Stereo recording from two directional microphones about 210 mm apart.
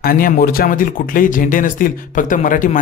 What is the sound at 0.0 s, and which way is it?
Speech, 45° left (ahead or behind).